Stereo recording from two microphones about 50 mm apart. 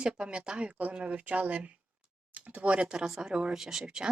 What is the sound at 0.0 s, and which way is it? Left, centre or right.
A woman's voice, right.